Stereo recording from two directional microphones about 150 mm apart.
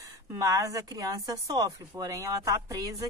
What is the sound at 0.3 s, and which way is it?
Speech, 20° right (ahead or behind).